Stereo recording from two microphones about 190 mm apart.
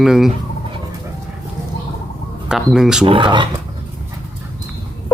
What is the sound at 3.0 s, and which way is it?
Speech, 25° right (ahead or behind).